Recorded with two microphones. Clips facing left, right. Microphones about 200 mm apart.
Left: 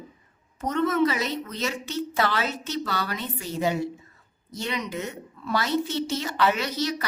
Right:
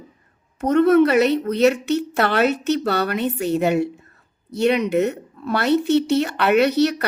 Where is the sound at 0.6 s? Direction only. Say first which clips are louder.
Right 9 dB; 65° right (ahead or behind).